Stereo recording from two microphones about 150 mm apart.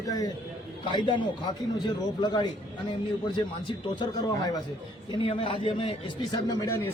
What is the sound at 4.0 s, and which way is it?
Speech, 25° left (ahead or behind).